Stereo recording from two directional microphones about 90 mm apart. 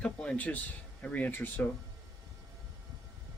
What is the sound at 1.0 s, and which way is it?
Speech, 20° left (ahead or behind).